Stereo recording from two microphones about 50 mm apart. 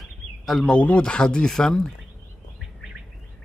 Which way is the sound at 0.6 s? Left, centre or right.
Left.